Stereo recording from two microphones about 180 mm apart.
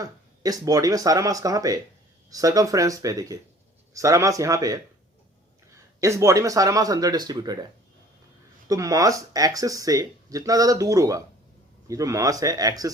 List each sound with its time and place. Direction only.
0.0 s speech: 20° right (ahead or behind)
8.6 s speech: 20° right (ahead or behind)